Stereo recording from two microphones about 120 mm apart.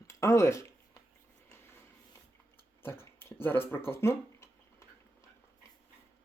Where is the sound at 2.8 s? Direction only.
20° left (ahead or behind).